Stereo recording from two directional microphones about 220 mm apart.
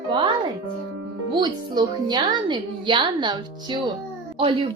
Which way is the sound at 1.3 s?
20° right (ahead or behind).